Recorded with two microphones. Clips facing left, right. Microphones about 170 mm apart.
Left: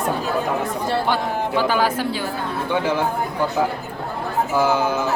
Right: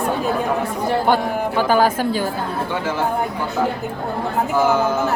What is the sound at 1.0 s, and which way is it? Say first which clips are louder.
Speech: right 4 dB; 50° right (ahead or behind).